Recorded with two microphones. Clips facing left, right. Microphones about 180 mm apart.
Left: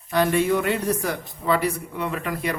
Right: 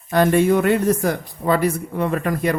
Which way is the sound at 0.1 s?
50° right (ahead or behind).